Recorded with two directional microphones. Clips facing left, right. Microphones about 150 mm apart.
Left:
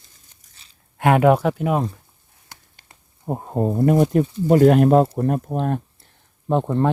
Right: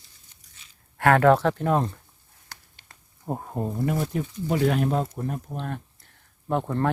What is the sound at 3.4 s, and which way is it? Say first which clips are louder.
Speech: left 11 dB; 30° left (ahead or behind).